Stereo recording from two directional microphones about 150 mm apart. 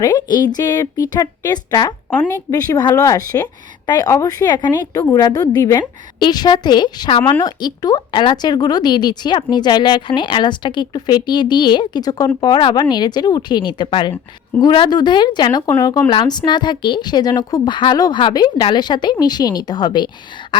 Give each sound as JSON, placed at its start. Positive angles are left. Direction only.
{"t": 0.0, "sound": "a woman's voice", "side_deg": 25}
{"t": 2.0, "sound": "speech", "side_deg": 5}
{"t": 2.5, "sound": "a woman's voice", "side_deg": 25}